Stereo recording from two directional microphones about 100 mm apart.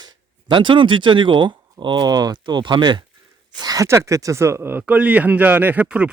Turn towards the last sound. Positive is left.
turn(degrees=-10)  # may be behind; listen again after turning